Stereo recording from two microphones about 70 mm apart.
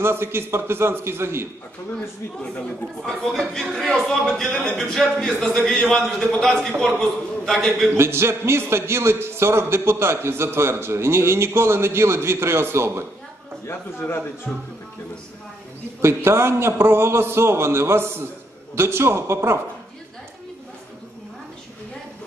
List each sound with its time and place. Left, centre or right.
0.0 s a man's voice: right
3.0 s a man's voice: centre
8.0 s a man's voice: right
13.7 s a man's voice: left
16.0 s a man's voice: right